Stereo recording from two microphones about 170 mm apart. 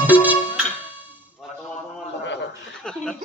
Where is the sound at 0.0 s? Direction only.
10° right (ahead or behind).